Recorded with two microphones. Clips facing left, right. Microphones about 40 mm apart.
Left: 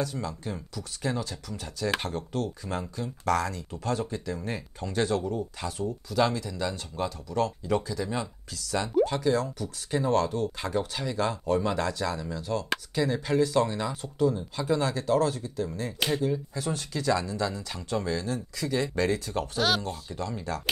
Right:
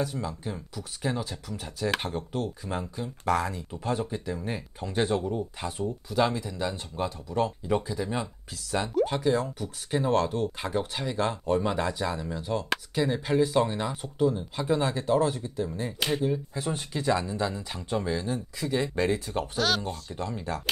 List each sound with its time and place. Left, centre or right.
0.0 s speech: centre
9.6 s speech: right
12.6 s speech: centre
13.0 s speech: centre
19.5 s speech: centre